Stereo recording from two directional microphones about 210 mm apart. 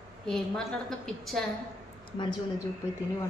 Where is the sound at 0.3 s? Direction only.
Centre (ahead or behind).